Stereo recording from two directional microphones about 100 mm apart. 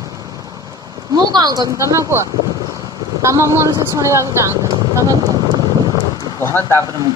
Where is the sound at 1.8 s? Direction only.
30° right (ahead or behind).